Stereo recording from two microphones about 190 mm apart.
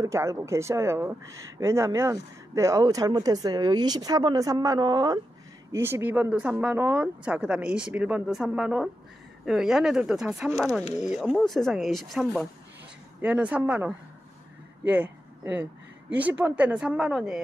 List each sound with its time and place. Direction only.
0.0 s speech: 15° right (ahead or behind)